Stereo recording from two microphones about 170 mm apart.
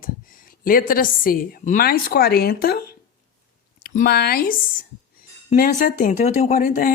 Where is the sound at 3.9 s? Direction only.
65° left (ahead or behind).